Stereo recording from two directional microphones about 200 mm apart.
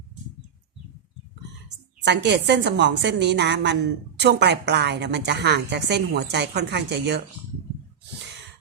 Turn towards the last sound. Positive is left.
turn(degrees=-55)  # may be behind; listen again after turning